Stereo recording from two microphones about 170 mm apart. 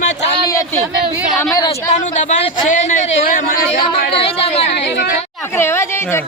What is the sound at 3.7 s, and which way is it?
Speech, 65° left (ahead or behind).